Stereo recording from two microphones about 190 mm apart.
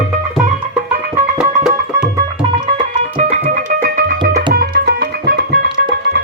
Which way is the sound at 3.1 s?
45° right (ahead or behind).